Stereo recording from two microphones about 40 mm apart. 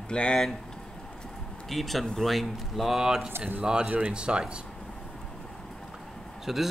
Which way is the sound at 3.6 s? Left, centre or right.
Centre.